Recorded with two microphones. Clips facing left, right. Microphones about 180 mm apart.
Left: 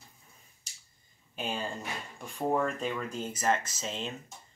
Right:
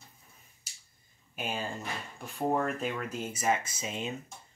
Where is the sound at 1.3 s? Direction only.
10° right (ahead or behind).